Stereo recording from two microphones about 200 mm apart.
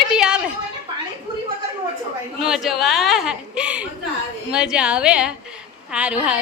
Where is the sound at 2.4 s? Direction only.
Centre (ahead or behind).